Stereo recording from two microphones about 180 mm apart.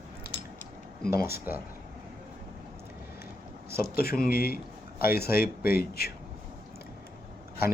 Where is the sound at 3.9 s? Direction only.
55° left (ahead or behind).